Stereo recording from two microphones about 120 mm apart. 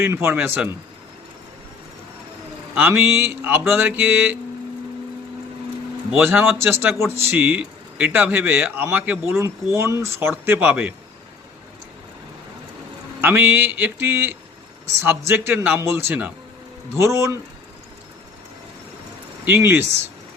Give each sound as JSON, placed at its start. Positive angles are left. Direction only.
{"t": 0.0, "sound": "speech", "side_deg": -20}
{"t": 0.3, "sound": "mantra", "side_deg": -20}
{"t": 2.7, "sound": "speech", "side_deg": -20}
{"t": 3.7, "sound": "mantra", "side_deg": -15}
{"t": 6.1, "sound": "speech", "side_deg": -20}
{"t": 13.2, "sound": "speech", "side_deg": -20}
{"t": 19.5, "sound": "speech", "side_deg": -20}